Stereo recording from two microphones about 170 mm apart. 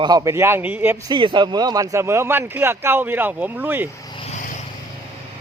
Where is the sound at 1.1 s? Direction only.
25° right (ahead or behind); by 3.9 s 10° right (ahead or behind).